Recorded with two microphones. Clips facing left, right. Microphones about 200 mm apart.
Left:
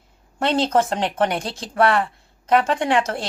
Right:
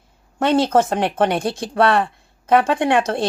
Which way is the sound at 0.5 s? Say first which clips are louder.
Right 3 dB; 50° right (ahead or behind).